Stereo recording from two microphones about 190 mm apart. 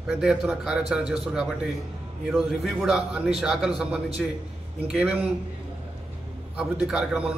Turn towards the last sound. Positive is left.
turn(degrees=-5)  # may be behind; listen again after turning